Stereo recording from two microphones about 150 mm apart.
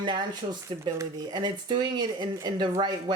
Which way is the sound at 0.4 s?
45° right (ahead or behind).